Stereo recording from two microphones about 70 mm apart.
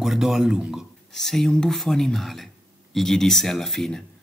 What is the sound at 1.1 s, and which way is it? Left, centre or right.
Speech, centre.